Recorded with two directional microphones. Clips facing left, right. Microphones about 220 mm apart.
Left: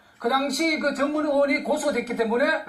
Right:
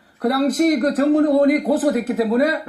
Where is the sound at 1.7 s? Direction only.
30° right (ahead or behind).